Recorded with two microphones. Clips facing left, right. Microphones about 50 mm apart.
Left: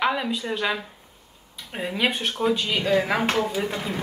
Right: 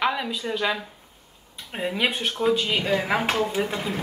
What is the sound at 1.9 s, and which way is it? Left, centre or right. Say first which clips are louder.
Speech: even; centre.